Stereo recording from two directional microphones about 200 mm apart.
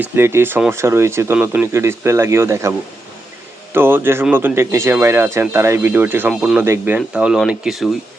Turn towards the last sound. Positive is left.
turn(degrees=0)  # may be behind; listen again after turning